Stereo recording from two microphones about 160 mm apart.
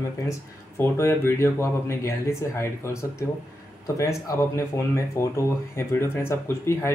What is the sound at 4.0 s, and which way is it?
Speech, 20° left (ahead or behind).